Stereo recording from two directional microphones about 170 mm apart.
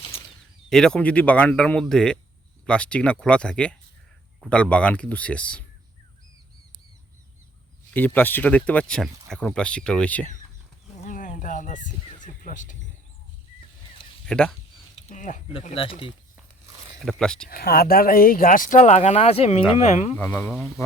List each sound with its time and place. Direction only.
0.7 s speech: 5° left (ahead or behind)
7.9 s speech: 10° left (ahead or behind)
11.0 s speech: 50° left (ahead or behind)
14.3 s speech: 5° left (ahead or behind)
15.1 s speech: 50° left (ahead or behind)
15.4 s speech: 35° left (ahead or behind)
17.1 s speech: 5° left (ahead or behind)
17.5 s speech: 60° left (ahead or behind)
18.8 s speech: 40° left (ahead or behind)
20.1 s speech: 10° left (ahead or behind)